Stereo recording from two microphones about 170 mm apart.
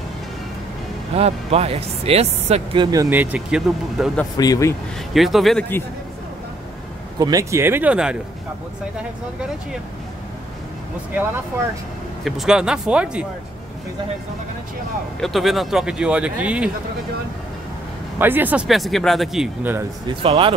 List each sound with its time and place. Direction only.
1.1 s speech: 35° right (ahead or behind); by 4.1 s 5° right (ahead or behind)
4.4 s speech: 20° left (ahead or behind)
5.1 s speech: centre (ahead or behind)
7.2 s speech: 20° right (ahead or behind)
12.3 s speech: centre (ahead or behind)
15.1 s speech: centre (ahead or behind)
18.2 s speech: 10° right (ahead or behind)
20.2 s speech: 30° right (ahead or behind)